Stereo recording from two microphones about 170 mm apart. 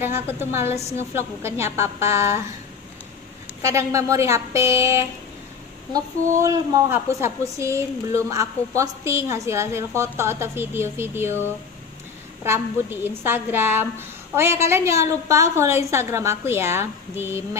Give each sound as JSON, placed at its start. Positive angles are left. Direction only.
{"t": 0.0, "sound": "a woman's voice", "side_deg": -15}
{"t": 3.6, "sound": "a woman's voice", "side_deg": -20}
{"t": 6.4, "sound": "a woman's voice", "side_deg": -20}
{"t": 12.4, "sound": "a woman's voice", "side_deg": -15}